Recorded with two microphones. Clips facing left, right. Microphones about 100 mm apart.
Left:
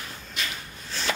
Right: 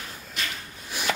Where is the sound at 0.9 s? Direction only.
15° right (ahead or behind).